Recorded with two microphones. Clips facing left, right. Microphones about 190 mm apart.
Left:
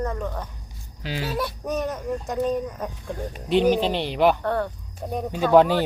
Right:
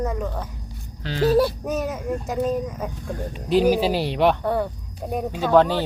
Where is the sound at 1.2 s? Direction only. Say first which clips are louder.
Right 12 dB; 35° right (ahead or behind).